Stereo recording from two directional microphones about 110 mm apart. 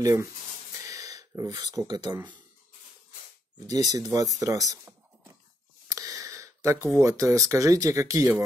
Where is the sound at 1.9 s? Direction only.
40° right (ahead or behind).